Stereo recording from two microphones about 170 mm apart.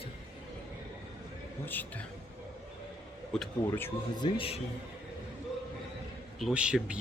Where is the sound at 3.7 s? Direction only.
15° left (ahead or behind).